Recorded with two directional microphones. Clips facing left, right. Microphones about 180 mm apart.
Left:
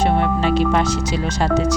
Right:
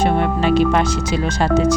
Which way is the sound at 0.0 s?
55° right (ahead or behind).